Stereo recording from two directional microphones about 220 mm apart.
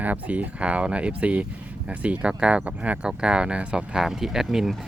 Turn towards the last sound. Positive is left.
turn(degrees=0)  # may be behind; listen again after turning